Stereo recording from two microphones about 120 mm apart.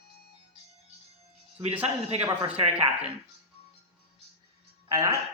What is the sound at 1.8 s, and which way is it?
A man's voice, 60° right (ahead or behind).